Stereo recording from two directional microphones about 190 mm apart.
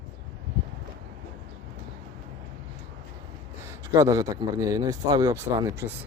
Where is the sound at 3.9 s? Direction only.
15° right (ahead or behind).